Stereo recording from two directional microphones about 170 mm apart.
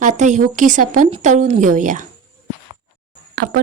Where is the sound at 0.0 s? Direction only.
45° right (ahead or behind).